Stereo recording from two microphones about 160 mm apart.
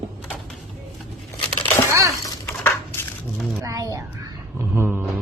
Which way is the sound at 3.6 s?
20° right (ahead or behind).